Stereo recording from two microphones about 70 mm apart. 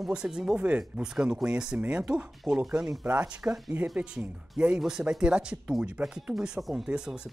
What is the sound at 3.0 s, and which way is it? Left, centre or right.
Speech, centre.